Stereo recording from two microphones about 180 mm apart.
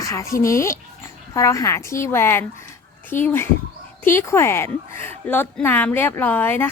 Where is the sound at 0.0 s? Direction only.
15° left (ahead or behind).